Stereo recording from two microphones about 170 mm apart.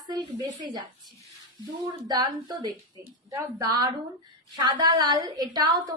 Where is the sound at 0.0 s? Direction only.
25° right (ahead or behind).